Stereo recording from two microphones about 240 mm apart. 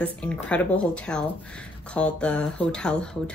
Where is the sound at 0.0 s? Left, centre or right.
Centre.